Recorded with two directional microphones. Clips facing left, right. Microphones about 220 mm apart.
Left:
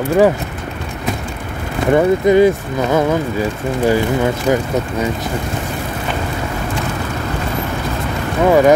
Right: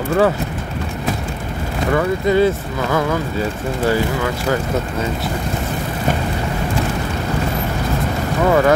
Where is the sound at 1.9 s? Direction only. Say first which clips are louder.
Left 5 dB; 20° left (ahead or behind).